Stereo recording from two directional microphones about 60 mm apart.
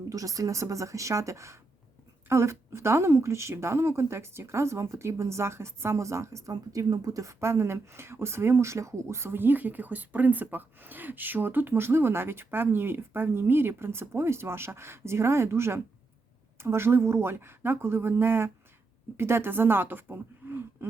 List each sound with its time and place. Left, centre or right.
0.1 s speech: right
7.3 s speech: right